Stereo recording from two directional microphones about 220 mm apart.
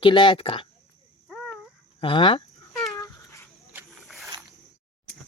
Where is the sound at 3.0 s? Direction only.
15° left (ahead or behind).